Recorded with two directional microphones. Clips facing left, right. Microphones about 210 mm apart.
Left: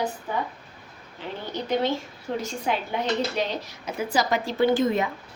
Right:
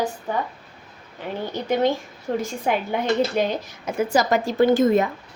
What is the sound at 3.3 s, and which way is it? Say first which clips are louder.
A woman's voice: right 5 dB; 50° right (ahead or behind).